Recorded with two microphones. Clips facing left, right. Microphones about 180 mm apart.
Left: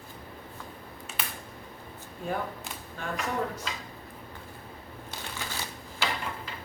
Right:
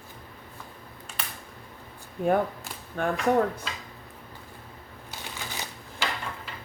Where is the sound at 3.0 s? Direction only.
55° right (ahead or behind).